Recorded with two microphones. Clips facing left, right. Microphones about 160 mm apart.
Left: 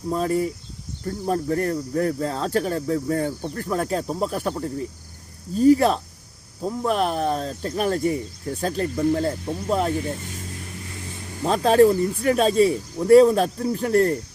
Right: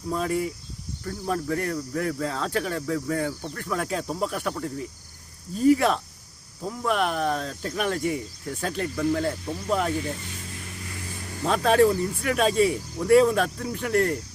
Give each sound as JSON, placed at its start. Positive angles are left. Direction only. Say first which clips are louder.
{"t": 0.1, "sound": "speech", "louder": "left 4 dB", "side_deg": 35}
{"t": 10.9, "sound": "vehicle", "louder": "left 1 dB", "side_deg": 20}
{"t": 11.4, "sound": "speech", "louder": "left 4 dB", "side_deg": 35}